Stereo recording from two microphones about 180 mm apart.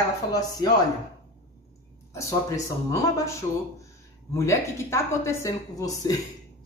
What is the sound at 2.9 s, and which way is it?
Speech, 15° left (ahead or behind).